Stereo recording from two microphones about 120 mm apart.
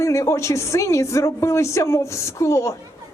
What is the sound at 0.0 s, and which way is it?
A woman's voice, 25° left (ahead or behind).